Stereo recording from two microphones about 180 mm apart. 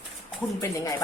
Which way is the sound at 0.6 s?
15° left (ahead or behind).